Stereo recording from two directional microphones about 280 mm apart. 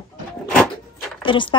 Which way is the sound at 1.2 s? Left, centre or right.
Centre.